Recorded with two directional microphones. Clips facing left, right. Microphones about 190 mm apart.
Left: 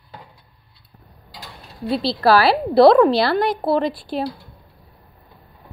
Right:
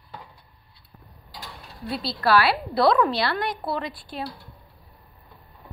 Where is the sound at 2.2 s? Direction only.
35° left (ahead or behind).